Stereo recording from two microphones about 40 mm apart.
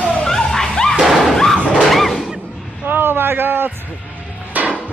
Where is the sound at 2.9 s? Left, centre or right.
Right.